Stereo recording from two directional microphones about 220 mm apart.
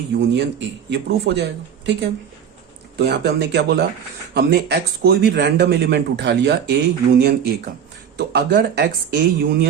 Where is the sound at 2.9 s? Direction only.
50° right (ahead or behind).